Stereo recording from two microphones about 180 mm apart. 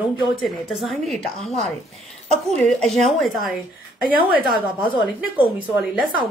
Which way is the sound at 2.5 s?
Centre (ahead or behind).